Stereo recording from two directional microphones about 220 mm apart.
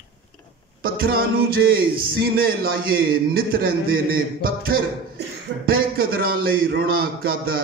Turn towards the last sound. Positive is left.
turn(degrees=-40)  # may be behind; listen again after turning